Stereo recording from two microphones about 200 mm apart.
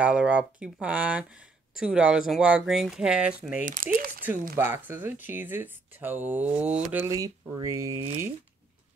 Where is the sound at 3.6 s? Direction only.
40° right (ahead or behind).